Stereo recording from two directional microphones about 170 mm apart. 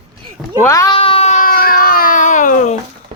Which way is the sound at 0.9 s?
35° left (ahead or behind).